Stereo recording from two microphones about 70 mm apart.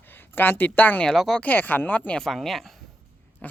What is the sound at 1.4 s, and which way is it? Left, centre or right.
Speech, left.